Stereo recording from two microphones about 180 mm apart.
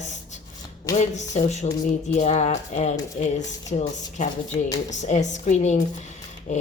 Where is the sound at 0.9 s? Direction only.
40° left (ahead or behind).